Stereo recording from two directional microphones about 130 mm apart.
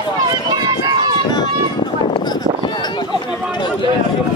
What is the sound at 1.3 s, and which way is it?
Run, 30° left (ahead or behind).